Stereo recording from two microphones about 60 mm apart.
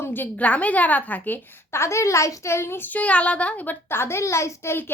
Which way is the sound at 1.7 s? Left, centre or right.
Left.